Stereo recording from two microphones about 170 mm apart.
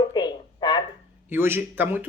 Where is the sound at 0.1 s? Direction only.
25° left (ahead or behind).